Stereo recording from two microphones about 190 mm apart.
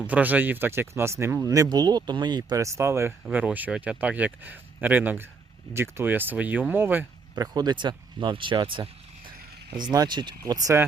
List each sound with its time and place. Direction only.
0.0 s speech: 10° right (ahead or behind)